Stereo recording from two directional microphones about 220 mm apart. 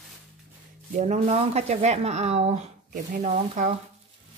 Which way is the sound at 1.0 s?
30° right (ahead or behind).